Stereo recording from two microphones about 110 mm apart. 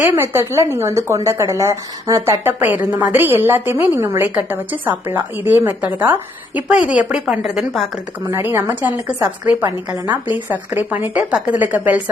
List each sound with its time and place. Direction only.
0.0 s a woman's voice: 20° right (ahead or behind)
2.4 s a woman's voice: 20° right (ahead or behind); by 7.9 s centre (ahead or behind)
8.3 s a woman's voice: 20° right (ahead or behind)